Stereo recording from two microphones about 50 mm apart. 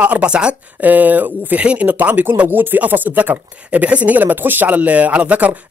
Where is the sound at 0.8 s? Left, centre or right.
Right.